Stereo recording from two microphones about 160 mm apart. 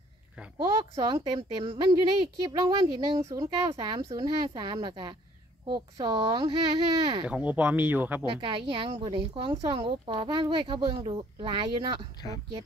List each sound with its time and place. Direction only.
0.9 s a woman's voice: 25° right (ahead or behind)
2.4 s speech: 25° right (ahead or behind)
7.2 s speech: 10° right (ahead or behind)
8.3 s a woman's voice: 30° right (ahead or behind)